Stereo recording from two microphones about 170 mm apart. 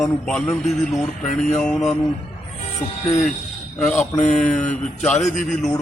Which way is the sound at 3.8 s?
5° left (ahead or behind).